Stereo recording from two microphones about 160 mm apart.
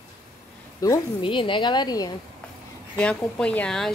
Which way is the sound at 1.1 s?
30° left (ahead or behind).